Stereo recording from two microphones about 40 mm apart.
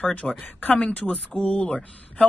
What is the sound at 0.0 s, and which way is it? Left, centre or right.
Speech, left.